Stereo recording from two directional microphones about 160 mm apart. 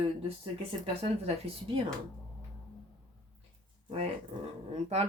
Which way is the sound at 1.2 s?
35° right (ahead or behind).